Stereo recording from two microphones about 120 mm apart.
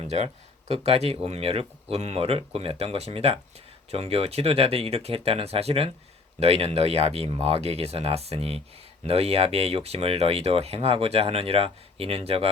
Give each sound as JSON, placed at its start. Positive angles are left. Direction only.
{"t": 0.7, "sound": "speech", "side_deg": -60}